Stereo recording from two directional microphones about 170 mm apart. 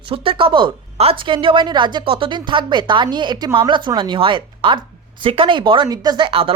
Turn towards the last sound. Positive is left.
turn(degrees=-30)  # may be behind; listen again after turning